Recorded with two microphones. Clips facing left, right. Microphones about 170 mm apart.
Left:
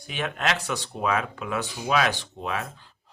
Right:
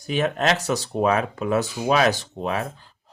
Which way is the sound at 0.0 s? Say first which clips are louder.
Right 7 dB; 40° right (ahead or behind).